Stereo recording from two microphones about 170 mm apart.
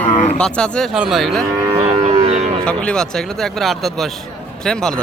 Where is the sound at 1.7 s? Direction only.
30° right (ahead or behind).